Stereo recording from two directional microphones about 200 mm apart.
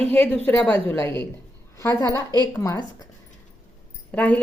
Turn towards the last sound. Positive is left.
turn(degrees=5)  # may be behind; listen again after turning